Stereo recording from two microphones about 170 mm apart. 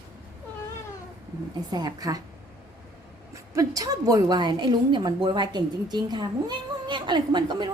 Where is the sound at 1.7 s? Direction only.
25° right (ahead or behind).